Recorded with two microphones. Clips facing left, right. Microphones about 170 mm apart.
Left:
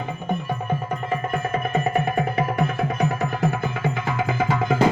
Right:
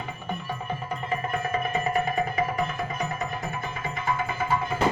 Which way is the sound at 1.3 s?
50° left (ahead or behind).